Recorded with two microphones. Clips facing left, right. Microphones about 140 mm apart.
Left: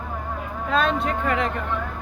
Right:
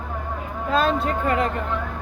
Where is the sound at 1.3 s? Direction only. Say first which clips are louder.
Right 3 dB; 35° right (ahead or behind).